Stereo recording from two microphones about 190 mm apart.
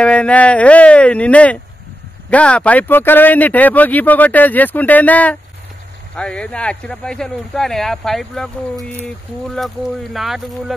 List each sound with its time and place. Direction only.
0.0 s speech: 5° left (ahead or behind)
9.6 s speech: centre (ahead or behind)